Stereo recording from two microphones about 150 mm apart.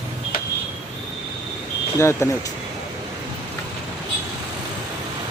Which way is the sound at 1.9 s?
20° left (ahead or behind).